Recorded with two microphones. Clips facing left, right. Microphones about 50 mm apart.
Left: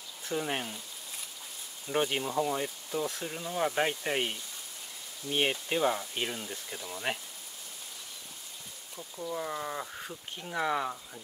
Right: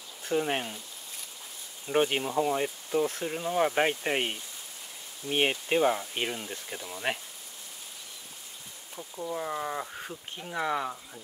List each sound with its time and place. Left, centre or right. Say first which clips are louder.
0.2 s speech: right 4 dB; centre
1.9 s speech: right 4 dB; centre
8.9 s speech: right 2 dB; centre